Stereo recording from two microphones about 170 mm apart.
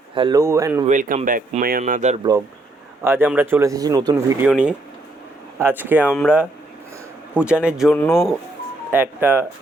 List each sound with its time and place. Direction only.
0.1 s speech: 25° right (ahead or behind)
0.9 s speech: 50° right (ahead or behind)
1.8 s speech: 45° right (ahead or behind)
3.0 s speech: 15° right (ahead or behind)
8.9 s speech: 10° right (ahead or behind)